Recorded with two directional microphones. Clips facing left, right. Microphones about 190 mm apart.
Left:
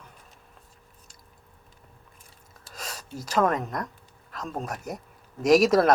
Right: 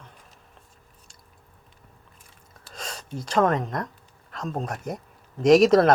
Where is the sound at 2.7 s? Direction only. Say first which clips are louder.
Right 3 dB; 5° left (ahead or behind).